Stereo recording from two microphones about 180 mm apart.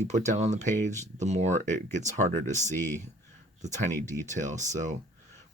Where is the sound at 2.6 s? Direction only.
15° left (ahead or behind).